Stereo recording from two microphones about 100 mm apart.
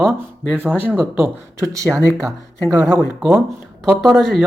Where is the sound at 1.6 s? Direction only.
30° right (ahead or behind).